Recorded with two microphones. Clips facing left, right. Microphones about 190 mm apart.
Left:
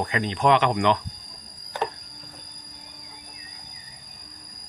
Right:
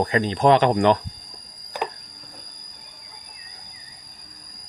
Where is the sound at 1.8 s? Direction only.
15° right (ahead or behind).